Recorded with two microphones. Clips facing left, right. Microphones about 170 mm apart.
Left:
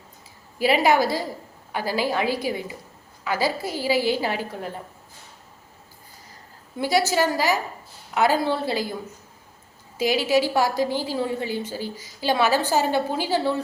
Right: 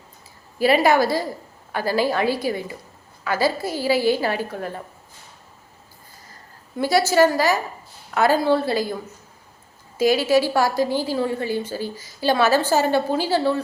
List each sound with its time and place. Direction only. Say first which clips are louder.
0.9 s a woman's voice: right 2 dB; 15° left (ahead or behind)
6.7 s a woman's voice: right 4 dB; 15° left (ahead or behind)
10.1 s a woman's voice: right 3 dB; 15° left (ahead or behind)